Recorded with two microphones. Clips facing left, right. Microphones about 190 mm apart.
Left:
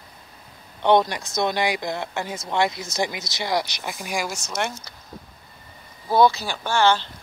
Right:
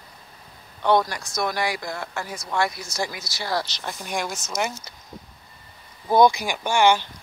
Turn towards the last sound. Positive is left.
turn(degrees=-15)  # may be behind; listen again after turning